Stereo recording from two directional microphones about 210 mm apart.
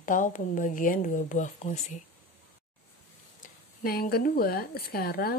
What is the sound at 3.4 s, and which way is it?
Speech, 45° left (ahead or behind).